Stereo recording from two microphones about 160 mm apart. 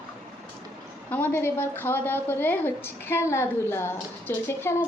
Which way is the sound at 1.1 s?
10° left (ahead or behind).